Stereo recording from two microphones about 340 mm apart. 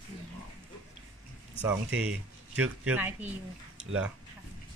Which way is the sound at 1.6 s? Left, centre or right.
Centre.